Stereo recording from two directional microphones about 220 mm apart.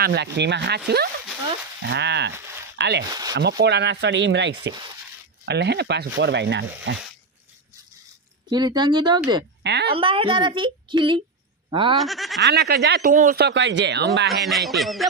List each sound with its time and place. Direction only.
0.0 s speech: 50° right (ahead or behind)
3.1 s speech: 15° right (ahead or behind)
3.6 s speech: 50° right (ahead or behind)
8.5 s a child's voice: 20° right (ahead or behind)
9.6 s speech: 50° right (ahead or behind)
9.9 s a child's voice: 25° right (ahead or behind)
12.0 s speech: centre (ahead or behind)
12.4 s speech: 45° right (ahead or behind)
14.3 s speech: centre (ahead or behind)